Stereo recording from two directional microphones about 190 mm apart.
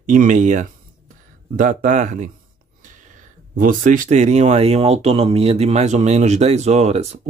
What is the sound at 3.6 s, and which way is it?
Speech, 45° right (ahead or behind).